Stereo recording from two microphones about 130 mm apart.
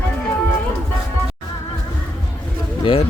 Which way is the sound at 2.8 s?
45° left (ahead or behind).